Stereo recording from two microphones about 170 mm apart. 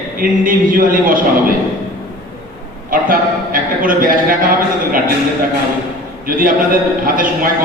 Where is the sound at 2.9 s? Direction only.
55° right (ahead or behind).